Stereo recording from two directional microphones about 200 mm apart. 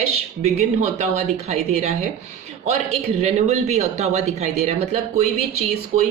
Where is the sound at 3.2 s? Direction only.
35° right (ahead or behind).